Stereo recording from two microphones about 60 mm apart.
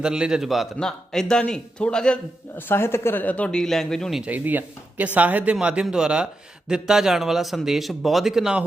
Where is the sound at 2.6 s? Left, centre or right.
Left.